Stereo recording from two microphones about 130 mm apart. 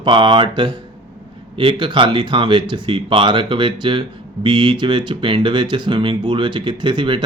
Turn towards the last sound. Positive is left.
turn(degrees=-35)  # may be behind; listen again after turning